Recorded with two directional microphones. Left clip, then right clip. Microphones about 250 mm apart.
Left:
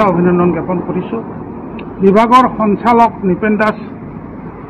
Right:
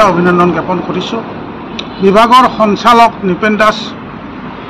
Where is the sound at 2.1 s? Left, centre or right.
Centre.